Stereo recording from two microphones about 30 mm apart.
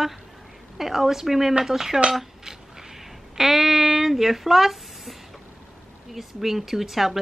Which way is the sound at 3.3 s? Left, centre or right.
Centre.